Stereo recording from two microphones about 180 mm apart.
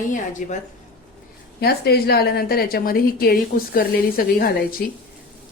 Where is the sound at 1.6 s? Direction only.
65° left (ahead or behind).